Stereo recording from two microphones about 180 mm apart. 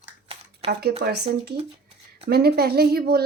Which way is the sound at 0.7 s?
65° right (ahead or behind).